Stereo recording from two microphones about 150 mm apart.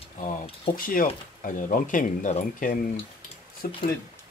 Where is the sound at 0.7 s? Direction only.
70° left (ahead or behind).